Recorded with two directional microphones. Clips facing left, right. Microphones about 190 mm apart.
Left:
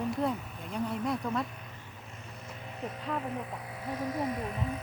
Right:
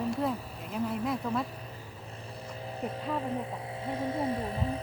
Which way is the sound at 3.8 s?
30° right (ahead or behind).